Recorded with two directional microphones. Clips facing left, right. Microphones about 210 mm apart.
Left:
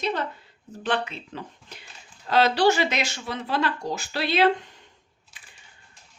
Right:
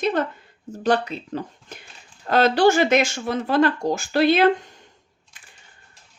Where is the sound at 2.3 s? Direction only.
50° right (ahead or behind).